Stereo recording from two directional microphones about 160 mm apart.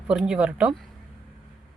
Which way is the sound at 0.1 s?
5° right (ahead or behind).